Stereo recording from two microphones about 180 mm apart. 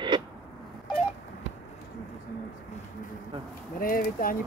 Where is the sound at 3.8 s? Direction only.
55° left (ahead or behind).